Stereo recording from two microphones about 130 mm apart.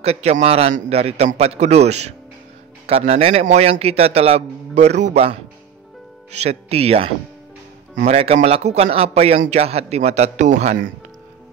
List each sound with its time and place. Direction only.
0.0 s a man's voice: 55° right (ahead or behind)